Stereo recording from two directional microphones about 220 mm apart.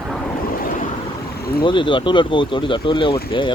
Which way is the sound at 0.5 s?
40° left (ahead or behind).